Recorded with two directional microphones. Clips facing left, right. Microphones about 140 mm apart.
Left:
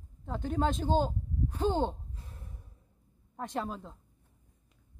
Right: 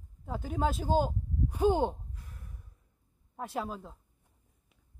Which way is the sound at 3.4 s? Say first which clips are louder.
Even; 5° right (ahead or behind).